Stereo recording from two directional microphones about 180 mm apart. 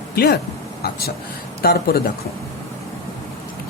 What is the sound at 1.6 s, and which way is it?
Speech, 60° left (ahead or behind).